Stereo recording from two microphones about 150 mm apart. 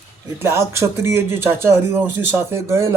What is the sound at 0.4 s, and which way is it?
A man's voice, 15° right (ahead or behind).